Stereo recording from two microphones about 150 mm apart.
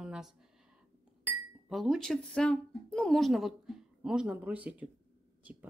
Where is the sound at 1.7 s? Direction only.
Centre (ahead or behind).